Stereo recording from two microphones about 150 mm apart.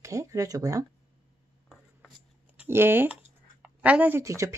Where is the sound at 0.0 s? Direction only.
20° right (ahead or behind).